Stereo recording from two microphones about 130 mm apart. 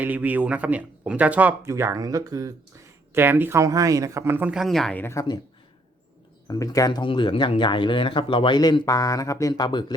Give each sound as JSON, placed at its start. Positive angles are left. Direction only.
{"t": 0.0, "sound": "speech", "side_deg": -15}
{"t": 1.7, "sound": "speech", "side_deg": -20}
{"t": 3.2, "sound": "speech", "side_deg": -15}
{"t": 4.5, "sound": "speech", "side_deg": 0}
{"t": 6.5, "sound": "speech", "side_deg": 30}